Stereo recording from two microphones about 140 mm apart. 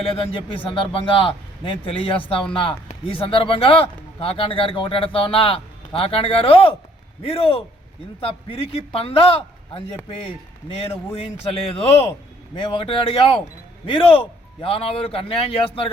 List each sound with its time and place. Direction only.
0.0 s speech: 45° left (ahead or behind)
11.2 s speech: 45° left (ahead or behind)